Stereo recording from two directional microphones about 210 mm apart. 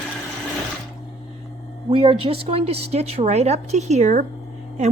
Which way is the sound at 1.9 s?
25° right (ahead or behind).